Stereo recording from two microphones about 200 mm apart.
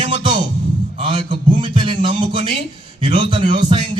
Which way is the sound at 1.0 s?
25° right (ahead or behind).